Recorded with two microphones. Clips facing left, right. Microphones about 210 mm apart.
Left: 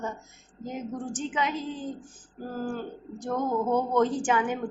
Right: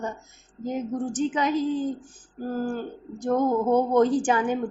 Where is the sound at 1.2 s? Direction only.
40° right (ahead or behind).